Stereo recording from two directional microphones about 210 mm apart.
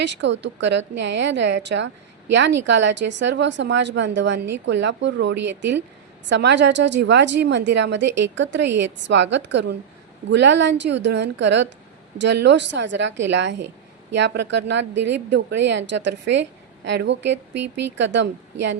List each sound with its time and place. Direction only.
0.0 s a woman's voice: 55° right (ahead or behind)